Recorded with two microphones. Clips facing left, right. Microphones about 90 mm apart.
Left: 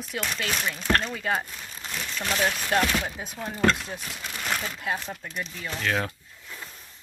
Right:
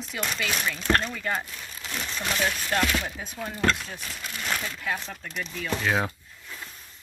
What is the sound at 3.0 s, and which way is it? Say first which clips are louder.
Speech: left 1 dB; 15° left (ahead or behind).